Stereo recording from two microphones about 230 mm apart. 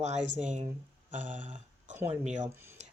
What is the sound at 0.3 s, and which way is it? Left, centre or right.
Speech, right.